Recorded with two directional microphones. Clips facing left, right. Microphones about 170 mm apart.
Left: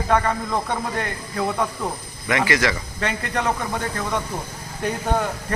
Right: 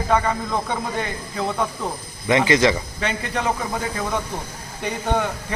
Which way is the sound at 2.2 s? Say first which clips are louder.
Right 4 dB; 20° right (ahead or behind).